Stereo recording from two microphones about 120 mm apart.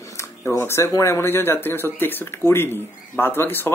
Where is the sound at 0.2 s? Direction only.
20° left (ahead or behind).